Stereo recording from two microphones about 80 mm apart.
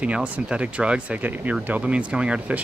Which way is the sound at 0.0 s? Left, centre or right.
Centre.